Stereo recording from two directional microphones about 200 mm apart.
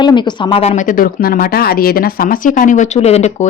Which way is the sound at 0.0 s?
20° left (ahead or behind).